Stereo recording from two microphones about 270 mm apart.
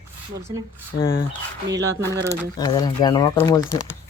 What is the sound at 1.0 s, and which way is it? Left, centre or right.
Speech, centre.